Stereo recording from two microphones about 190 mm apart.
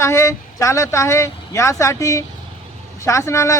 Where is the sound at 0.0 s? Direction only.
15° left (ahead or behind).